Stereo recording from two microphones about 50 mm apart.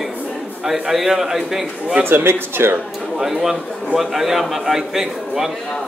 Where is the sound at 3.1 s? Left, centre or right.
Centre.